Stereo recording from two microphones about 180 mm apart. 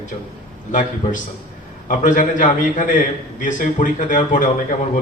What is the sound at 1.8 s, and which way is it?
A man's voice, 45° left (ahead or behind).